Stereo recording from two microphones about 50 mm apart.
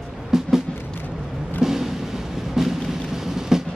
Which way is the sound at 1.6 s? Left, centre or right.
Centre.